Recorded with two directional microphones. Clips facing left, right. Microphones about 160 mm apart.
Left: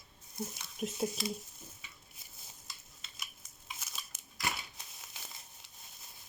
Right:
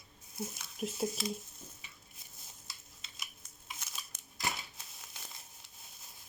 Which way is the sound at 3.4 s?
Centre (ahead or behind).